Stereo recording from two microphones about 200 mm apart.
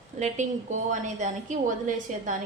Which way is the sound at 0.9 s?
40° right (ahead or behind).